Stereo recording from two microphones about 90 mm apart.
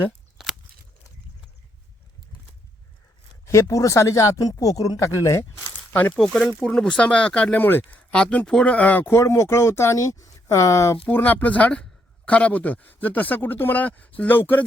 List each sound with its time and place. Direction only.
0.4 s a sound: 5° right (ahead or behind)
3.4 s speech: 35° left (ahead or behind)
5.9 s speech: 20° left (ahead or behind)
6.1 s speech: 5° left (ahead or behind); by 10.9 s 30° left (ahead or behind)
11.1 s speech: 20° left (ahead or behind)